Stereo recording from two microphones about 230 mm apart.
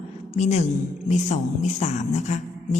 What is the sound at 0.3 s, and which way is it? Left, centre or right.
Music, left.